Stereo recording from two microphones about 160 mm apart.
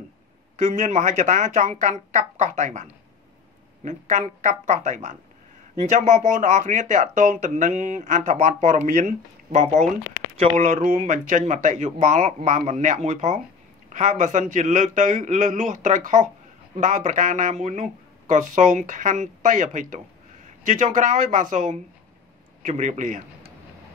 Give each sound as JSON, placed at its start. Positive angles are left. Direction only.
{"t": 0.7, "sound": "a man's voice", "side_deg": -50}